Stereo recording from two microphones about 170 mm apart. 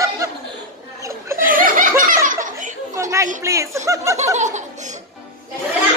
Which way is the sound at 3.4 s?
15° right (ahead or behind).